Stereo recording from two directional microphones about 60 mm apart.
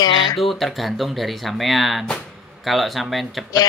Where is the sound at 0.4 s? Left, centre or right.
Centre.